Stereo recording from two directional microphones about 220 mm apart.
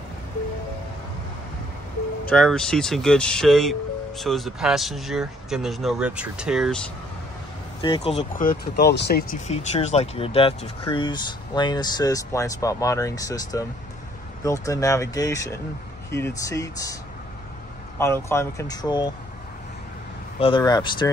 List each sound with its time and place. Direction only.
2.2 s speech: 5° left (ahead or behind)
7.8 s speech: 25° left (ahead or behind)
8.2 s speech: 40° left (ahead or behind)
9.5 s speech: 30° left (ahead or behind); by 16.9 s 15° left (ahead or behind)
17.9 s speech: 10° left (ahead or behind)
20.3 s speech: 25° left (ahead or behind)